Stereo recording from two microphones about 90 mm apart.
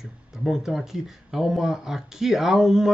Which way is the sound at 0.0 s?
5° right (ahead or behind).